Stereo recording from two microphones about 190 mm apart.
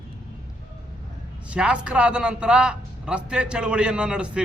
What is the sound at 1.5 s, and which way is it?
A man's voice, 5° right (ahead or behind).